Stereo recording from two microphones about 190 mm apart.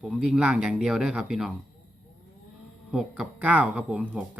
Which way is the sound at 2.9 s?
Centre (ahead or behind).